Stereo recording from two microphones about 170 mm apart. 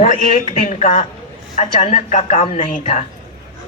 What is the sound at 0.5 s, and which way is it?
Speech, 45° left (ahead or behind).